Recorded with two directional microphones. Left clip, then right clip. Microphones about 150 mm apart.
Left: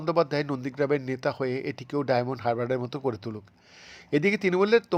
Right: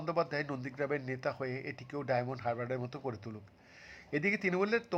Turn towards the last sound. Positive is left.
turn(degrees=35)  # may be behind; listen again after turning